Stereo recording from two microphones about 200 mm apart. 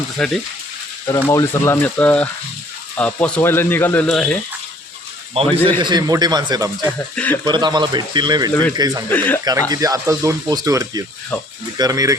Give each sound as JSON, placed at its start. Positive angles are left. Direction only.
{"t": 0.2, "sound": "speech", "side_deg": 5}
{"t": 1.0, "sound": "speech", "side_deg": 15}
{"t": 5.4, "sound": "speech", "side_deg": -30}
{"t": 5.8, "sound": "speech", "side_deg": -20}
{"t": 9.0, "sound": "speech", "side_deg": 10}
{"t": 9.4, "sound": "speech", "side_deg": -20}